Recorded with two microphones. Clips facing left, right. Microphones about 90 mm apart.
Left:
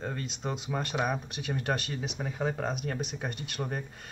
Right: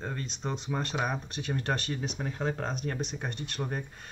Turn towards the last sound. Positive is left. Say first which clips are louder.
# even
turn(degrees=0)  # may be behind; listen again after turning